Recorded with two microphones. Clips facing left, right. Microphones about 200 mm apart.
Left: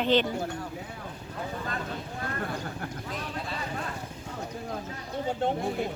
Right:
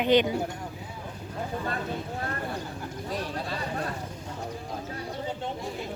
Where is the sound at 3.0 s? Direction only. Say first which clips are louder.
Right 7 dB; 40° right (ahead or behind).